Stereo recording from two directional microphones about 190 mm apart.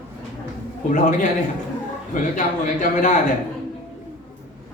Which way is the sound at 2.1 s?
40° left (ahead or behind).